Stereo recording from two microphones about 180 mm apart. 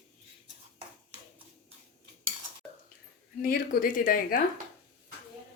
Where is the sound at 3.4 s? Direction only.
50° left (ahead or behind).